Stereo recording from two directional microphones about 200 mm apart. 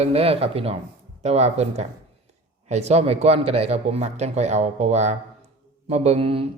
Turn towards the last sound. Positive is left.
turn(degrees=-30)  # may be behind; listen again after turning